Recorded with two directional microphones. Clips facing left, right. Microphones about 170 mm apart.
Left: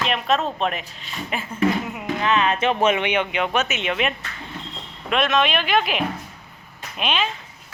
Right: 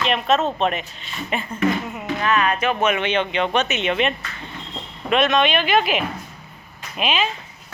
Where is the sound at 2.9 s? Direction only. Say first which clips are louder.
Right 1 dB; 15° left (ahead or behind).